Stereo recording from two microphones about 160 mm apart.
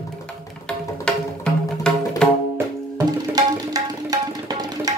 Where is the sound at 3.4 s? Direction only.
25° right (ahead or behind).